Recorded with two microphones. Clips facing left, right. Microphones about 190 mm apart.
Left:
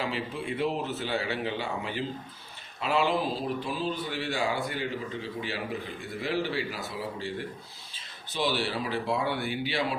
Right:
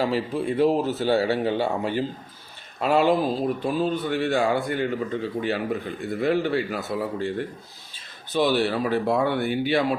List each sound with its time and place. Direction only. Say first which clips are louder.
0.0 s speech: right 8 dB; 40° right (ahead or behind)